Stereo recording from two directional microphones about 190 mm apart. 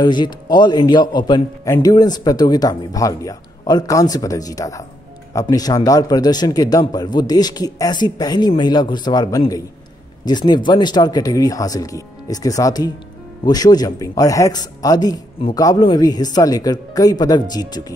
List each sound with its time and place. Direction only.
0.0 s a man's voice: 20° left (ahead or behind)